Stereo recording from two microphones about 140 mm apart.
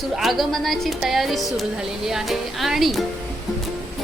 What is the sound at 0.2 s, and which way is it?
A man's voice, centre (ahead or behind).